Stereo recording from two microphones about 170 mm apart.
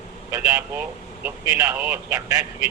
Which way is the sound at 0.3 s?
15° right (ahead or behind).